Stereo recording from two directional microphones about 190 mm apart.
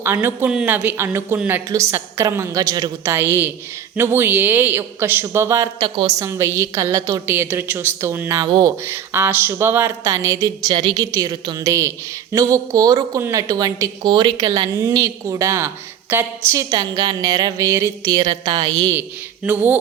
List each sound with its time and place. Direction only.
0.0 s a woman's voice: 15° right (ahead or behind)
19.5 s a woman's voice: 10° right (ahead or behind)